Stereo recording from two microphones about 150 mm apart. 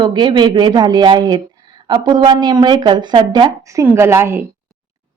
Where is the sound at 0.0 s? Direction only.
30° right (ahead or behind).